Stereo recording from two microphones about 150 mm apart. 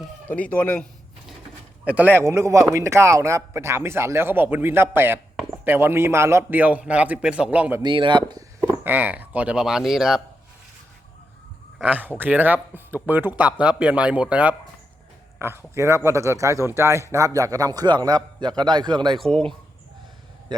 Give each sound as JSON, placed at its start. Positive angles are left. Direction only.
{"t": 0.3, "sound": "speech", "side_deg": 10}
{"t": 1.8, "sound": "speech", "side_deg": -10}
{"t": 7.8, "sound": "speech", "side_deg": -30}
{"t": 8.8, "sound": "speech", "side_deg": -10}
{"t": 11.8, "sound": "speech", "side_deg": -10}
{"t": 20.5, "sound": "a sound", "side_deg": -30}